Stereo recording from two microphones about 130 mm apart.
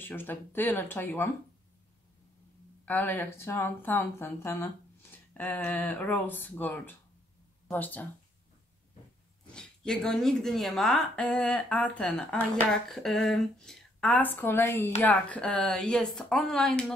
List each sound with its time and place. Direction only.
0.0 s a woman's voice: 15° left (ahead or behind)
2.8 s a woman's voice: 15° left (ahead or behind)
9.5 s a woman's voice: 5° left (ahead or behind)